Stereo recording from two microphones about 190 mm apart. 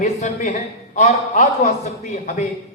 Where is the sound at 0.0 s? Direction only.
40° left (ahead or behind).